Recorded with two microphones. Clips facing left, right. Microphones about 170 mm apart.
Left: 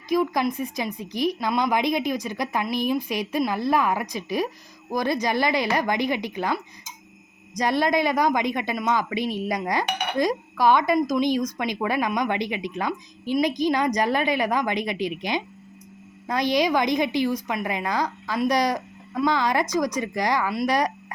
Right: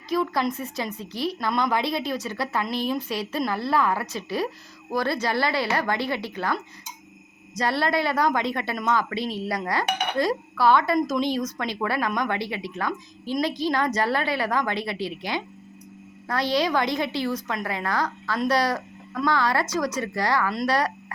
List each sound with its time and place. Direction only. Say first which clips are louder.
0.1 s a woman's voice: left 2 dB; 15° left (ahead or behind)